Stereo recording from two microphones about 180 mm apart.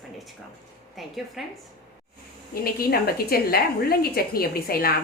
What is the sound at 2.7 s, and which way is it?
A woman's voice, 60° left (ahead or behind).